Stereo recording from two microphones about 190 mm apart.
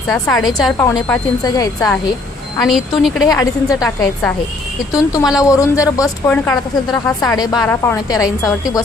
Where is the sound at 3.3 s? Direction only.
20° left (ahead or behind).